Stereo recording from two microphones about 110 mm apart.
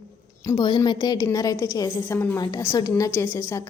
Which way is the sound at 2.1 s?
20° left (ahead or behind).